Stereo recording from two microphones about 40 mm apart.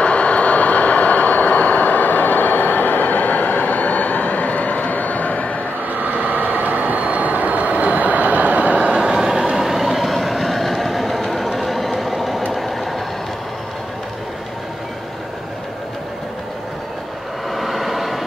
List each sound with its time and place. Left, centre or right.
0.0 s vehicle: left
5.9 s train: right; by 12.4 s centre
12.5 s vehicle: centre
17.6 s vehicle: centre